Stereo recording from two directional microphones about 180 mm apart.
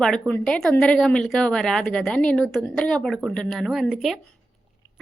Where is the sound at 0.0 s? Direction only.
5° left (ahead or behind).